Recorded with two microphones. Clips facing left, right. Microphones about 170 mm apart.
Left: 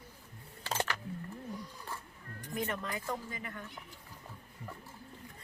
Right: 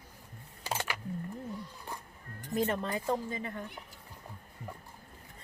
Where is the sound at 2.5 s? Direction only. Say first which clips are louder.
Right 6 dB; 30° right (ahead or behind).